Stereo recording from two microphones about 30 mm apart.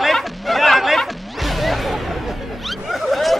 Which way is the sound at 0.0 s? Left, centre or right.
Centre.